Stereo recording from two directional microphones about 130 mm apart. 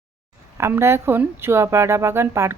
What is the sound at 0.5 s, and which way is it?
A woman's voice, 20° right (ahead or behind).